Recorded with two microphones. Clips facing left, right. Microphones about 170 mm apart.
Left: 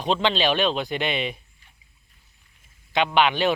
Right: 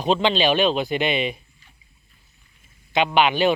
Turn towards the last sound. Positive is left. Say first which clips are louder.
# right 2 dB
turn(degrees=-5)  # may be behind; listen again after turning